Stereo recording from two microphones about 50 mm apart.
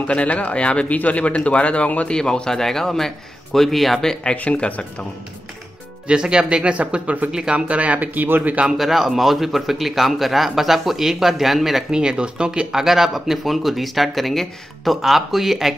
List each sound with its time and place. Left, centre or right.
0.0 s speech: left
2.1 s a man's voice: centre
4.4 s speech: left
6.0 s speech: centre; by 8.5 s right
8.7 s a man's voice: centre
11.9 s a man's voice: centre